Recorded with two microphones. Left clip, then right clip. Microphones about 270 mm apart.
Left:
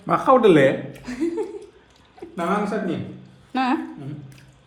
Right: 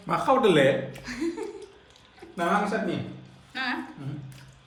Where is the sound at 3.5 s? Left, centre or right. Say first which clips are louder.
Left 8 dB; centre.